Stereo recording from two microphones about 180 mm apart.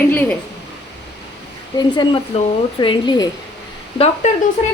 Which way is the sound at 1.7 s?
25° left (ahead or behind).